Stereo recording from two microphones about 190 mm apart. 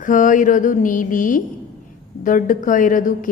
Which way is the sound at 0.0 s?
45° left (ahead or behind).